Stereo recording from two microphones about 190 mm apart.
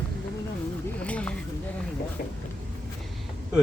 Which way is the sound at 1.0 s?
5° left (ahead or behind).